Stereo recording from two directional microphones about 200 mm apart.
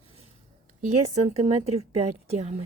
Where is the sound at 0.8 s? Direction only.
30° right (ahead or behind).